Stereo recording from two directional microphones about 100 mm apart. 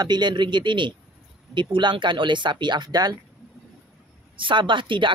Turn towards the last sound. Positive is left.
turn(degrees=-55)  # may be behind; listen again after turning